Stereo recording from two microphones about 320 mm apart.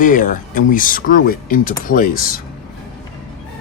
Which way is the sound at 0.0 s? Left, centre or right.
Left.